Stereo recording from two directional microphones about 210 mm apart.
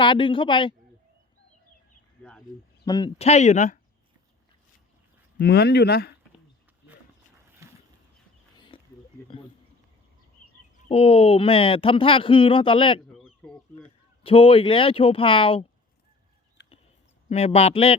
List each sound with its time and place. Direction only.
0.0 s speech: 25° left (ahead or behind)
2.5 s speech: 40° left (ahead or behind)
2.8 s speech: 20° left (ahead or behind)
3.2 s speech: 30° left (ahead or behind)
5.4 s speech: 50° left (ahead or behind)
7.6 s a sound: 15° right (ahead or behind)
8.5 s a sound: 20° left (ahead or behind)
10.8 s speech: 30° left (ahead or behind)
13.1 s bird: centre (ahead or behind)
14.3 s speech: 25° left (ahead or behind)
16.6 s a sound: 55° left (ahead or behind)
17.2 s speech: 30° left (ahead or behind)